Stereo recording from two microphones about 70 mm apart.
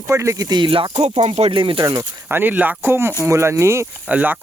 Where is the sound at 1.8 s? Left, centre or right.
Right.